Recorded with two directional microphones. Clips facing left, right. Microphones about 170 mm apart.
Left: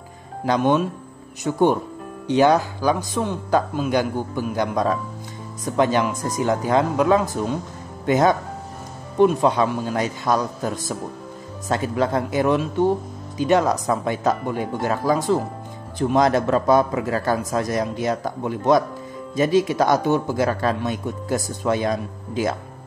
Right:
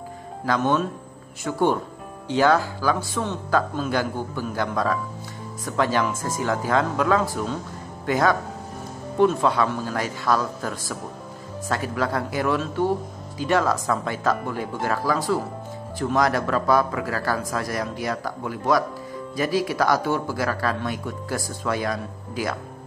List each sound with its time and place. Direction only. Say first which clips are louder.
0.5 s a man's voice: left 3 dB; 15° left (ahead or behind)